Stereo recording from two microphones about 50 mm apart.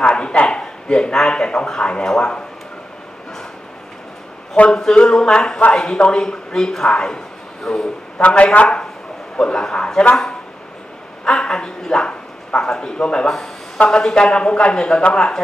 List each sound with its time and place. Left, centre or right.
0.0 s speech: centre
4.6 s speech: centre
8.2 s speech: left
9.4 s speech: centre
11.2 s speech: centre